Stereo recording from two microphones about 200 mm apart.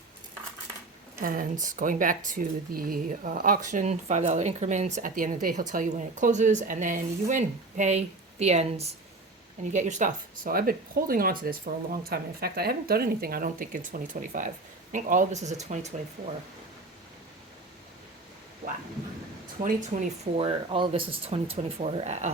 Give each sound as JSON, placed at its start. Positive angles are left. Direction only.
{"t": 1.2, "sound": "speech", "side_deg": -40}
{"t": 19.6, "sound": "speech", "side_deg": -40}
{"t": 20.4, "sound": "speech", "side_deg": -25}